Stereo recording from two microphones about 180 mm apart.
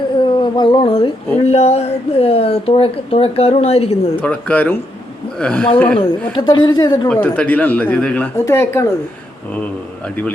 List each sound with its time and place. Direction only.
0.2 s a sound: 25° left (ahead or behind)
1.5 s speech: 35° left (ahead or behind)
4.2 s speech: 10° left (ahead or behind)
6.3 s a woman's voice: 25° left (ahead or behind)
7.1 s speech: 5° left (ahead or behind)